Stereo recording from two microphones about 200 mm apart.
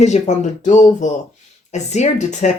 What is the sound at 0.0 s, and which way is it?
Speech, 35° left (ahead or behind).